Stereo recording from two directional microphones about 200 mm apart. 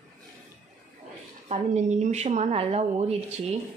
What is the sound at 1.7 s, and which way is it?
Speech, 35° right (ahead or behind).